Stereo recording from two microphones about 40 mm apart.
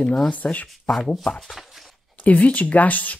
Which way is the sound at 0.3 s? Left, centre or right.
Left.